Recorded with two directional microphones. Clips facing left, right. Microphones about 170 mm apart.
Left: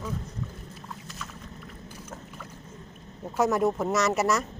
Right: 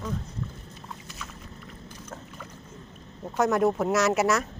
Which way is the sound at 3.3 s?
Centre (ahead or behind).